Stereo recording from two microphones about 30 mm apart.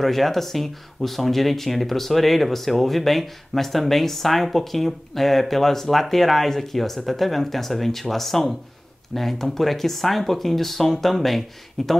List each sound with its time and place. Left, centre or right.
0.0 s speech: centre